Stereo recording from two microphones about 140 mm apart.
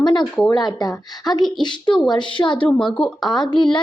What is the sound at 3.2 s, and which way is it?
Speech, 30° left (ahead or behind).